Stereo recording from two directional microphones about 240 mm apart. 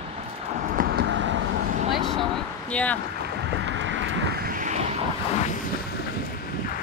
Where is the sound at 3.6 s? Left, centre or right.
Right.